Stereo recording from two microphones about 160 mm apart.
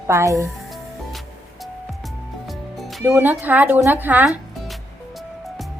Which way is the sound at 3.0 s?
15° right (ahead or behind).